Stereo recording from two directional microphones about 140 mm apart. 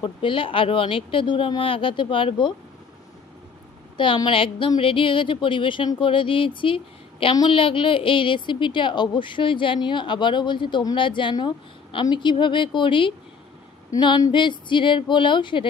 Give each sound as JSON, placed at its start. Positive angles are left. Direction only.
{"t": 0.0, "sound": "speech", "side_deg": 35}
{"t": 3.9, "sound": "speech", "side_deg": 35}